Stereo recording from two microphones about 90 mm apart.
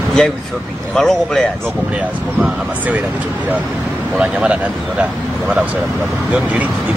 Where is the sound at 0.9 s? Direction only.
5° left (ahead or behind).